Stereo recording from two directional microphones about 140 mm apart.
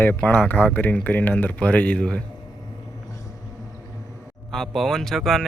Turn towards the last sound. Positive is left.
turn(degrees=0)  # may be behind; listen again after turning